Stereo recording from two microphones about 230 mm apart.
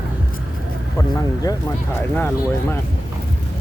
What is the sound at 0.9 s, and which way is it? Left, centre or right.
Speech, centre.